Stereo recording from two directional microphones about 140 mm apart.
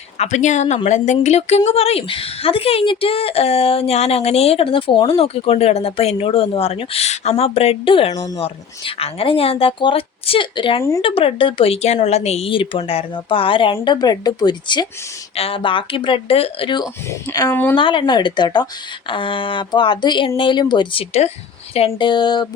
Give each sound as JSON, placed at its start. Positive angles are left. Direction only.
{"t": 0.2, "sound": "a woman's voice", "side_deg": 55}
{"t": 15.4, "sound": "speech", "side_deg": 40}
{"t": 17.1, "sound": "speech", "side_deg": 25}
{"t": 17.7, "sound": "speech", "side_deg": 35}